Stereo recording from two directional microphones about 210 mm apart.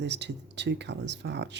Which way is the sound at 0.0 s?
55° right (ahead or behind).